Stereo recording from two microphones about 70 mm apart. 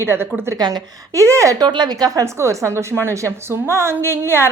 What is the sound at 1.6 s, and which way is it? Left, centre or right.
Speech, right.